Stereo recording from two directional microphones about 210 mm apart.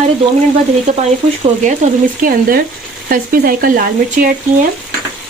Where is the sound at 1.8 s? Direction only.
35° right (ahead or behind).